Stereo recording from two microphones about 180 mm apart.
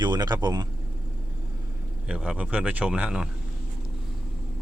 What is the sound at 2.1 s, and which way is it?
Speech, 5° right (ahead or behind).